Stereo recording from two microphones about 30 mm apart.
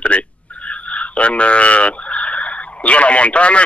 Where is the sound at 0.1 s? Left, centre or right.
Left.